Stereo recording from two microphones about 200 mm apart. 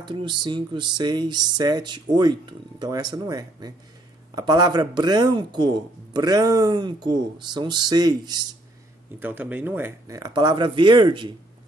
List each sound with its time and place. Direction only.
0.0 s speech: 20° right (ahead or behind)
9.2 s speech: 10° right (ahead or behind)